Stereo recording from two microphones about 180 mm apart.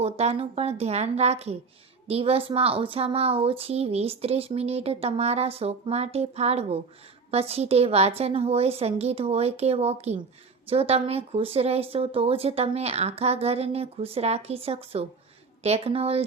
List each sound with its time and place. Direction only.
0.0 s speech: 35° right (ahead or behind)